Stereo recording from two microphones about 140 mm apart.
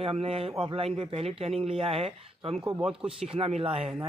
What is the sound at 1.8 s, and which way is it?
Speech, 40° right (ahead or behind).